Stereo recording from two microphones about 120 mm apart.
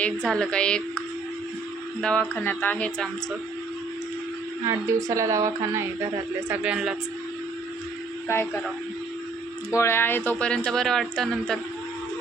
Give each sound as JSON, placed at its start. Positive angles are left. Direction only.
{"t": 0.3, "sound": "speech", "side_deg": 5}
{"t": 4.6, "sound": "speech", "side_deg": -25}
{"t": 6.5, "sound": "speech", "side_deg": -10}
{"t": 9.7, "sound": "speech", "side_deg": 20}